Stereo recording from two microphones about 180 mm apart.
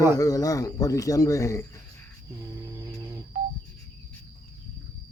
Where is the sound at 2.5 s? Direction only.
20° right (ahead or behind).